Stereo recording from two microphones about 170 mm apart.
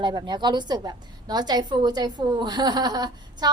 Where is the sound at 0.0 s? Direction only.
25° right (ahead or behind).